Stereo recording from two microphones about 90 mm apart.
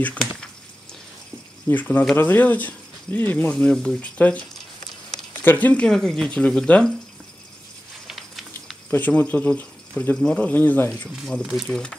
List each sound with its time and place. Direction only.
0.0 s a sound: 10° left (ahead or behind)
1.7 s speech: 20° left (ahead or behind)
3.5 s speech: 5° left (ahead or behind)
5.4 s speech: 20° left (ahead or behind)
5.9 s speech: 5° left (ahead or behind)
8.1 s a sound: centre (ahead or behind)
8.9 s speech: 20° left (ahead or behind)
11.1 s speech: 5° left (ahead or behind)